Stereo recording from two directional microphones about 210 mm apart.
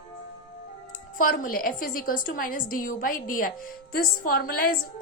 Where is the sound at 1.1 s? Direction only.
40° left (ahead or behind).